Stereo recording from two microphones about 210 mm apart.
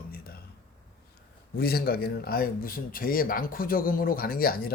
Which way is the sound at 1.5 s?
45° left (ahead or behind).